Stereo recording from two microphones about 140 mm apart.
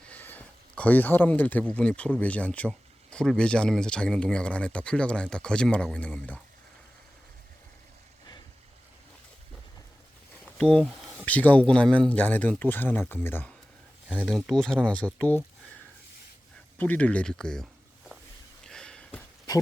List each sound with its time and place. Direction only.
0.0 s speech: 10° left (ahead or behind)
10.4 s a sound: 5° left (ahead or behind)
11.3 s speech: 10° left (ahead or behind)
14.3 s speech: centre (ahead or behind)
16.7 s speech: 10° left (ahead or behind)
18.6 s sniff: 5° left (ahead or behind)